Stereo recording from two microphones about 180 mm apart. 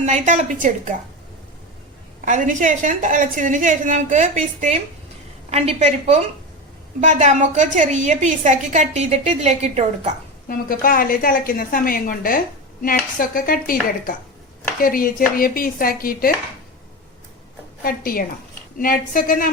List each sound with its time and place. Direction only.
0.0 s a woman's voice: 40° right (ahead or behind)
2.2 s a woman's voice: 45° right (ahead or behind)
10.5 s a woman's voice: 55° left (ahead or behind)
14.8 s a woman's voice: 50° left (ahead or behind)
17.8 s a woman's voice: 55° left (ahead or behind)